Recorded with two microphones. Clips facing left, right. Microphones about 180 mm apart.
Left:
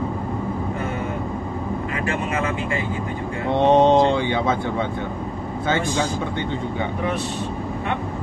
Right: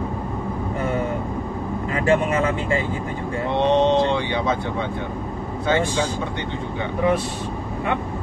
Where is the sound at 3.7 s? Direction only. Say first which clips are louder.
Left 3 dB; 50° left (ahead or behind).